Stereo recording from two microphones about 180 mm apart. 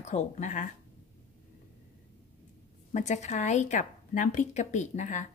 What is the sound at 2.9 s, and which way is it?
A woman's voice, 40° left (ahead or behind).